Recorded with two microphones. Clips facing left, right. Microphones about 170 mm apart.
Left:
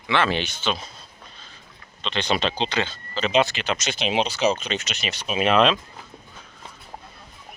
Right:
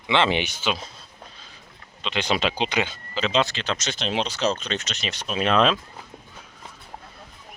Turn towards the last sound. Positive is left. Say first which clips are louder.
# left 2 dB
turn(degrees=0)  # may be behind; listen again after turning